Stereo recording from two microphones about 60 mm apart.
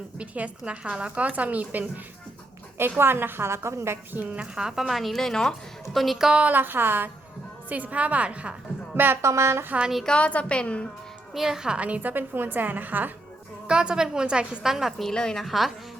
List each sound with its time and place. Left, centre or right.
0.2 s a woman's voice: right
3.0 s a woman's voice: right
4.1 s a woman's voice: right
4.4 s a woman's voice: centre
6.4 s a woman's voice: right
7.7 s a woman's voice: right
9.2 s a woman's voice: right
10.1 s a woman's voice: left
11.3 s a woman's voice: centre
11.8 s a woman's voice: right
13.7 s a woman's voice: centre
14.7 s a woman's voice: centre
15.0 s a woman's voice: centre
15.4 s a woman's voice: centre